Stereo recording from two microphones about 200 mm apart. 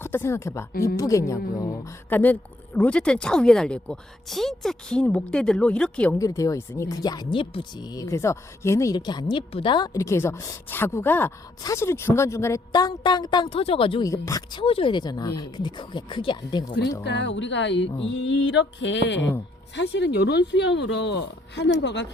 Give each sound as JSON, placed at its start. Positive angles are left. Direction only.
{"t": 0.0, "sound": "speech", "side_deg": 10}
{"t": 14.1, "sound": "speech", "side_deg": 15}
{"t": 17.0, "sound": "speech", "side_deg": 60}